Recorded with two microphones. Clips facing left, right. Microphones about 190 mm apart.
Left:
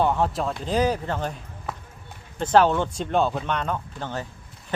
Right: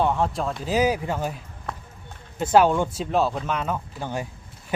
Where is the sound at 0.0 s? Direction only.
Centre (ahead or behind).